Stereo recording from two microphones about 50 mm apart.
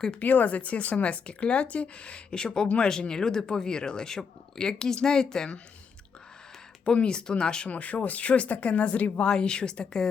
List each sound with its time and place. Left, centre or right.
0.2 s speech: left; by 5.5 s centre
6.8 s speech: centre
7.7 s speech: left
9.2 s speech: centre